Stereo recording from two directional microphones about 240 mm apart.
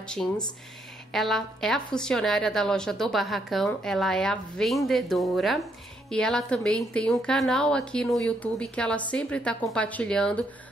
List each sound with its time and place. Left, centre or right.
0.0 s a woman's voice: centre